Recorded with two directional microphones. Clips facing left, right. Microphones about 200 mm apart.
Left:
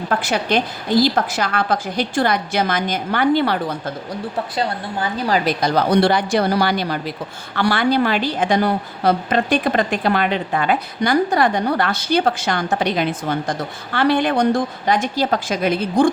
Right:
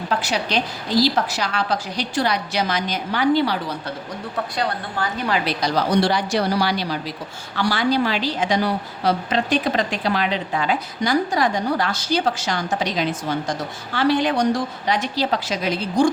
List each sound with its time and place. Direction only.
0.1 s a woman's voice: 55° left (ahead or behind)
5.3 s a woman's voice: 50° left (ahead or behind)